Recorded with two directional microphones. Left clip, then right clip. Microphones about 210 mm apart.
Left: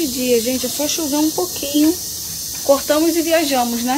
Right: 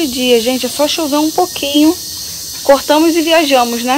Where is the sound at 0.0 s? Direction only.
Centre (ahead or behind).